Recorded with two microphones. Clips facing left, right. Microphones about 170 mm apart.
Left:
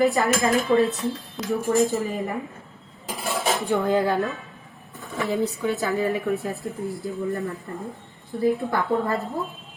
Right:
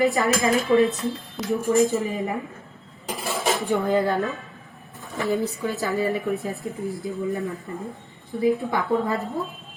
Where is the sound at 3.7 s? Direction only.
Centre (ahead or behind).